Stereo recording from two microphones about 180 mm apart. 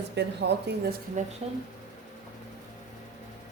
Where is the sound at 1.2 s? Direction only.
45° right (ahead or behind).